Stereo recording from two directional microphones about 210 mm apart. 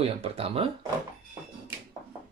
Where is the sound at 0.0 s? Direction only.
30° right (ahead or behind).